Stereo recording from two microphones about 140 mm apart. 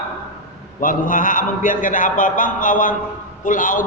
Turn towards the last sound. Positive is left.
turn(degrees=70)  # may be behind; listen again after turning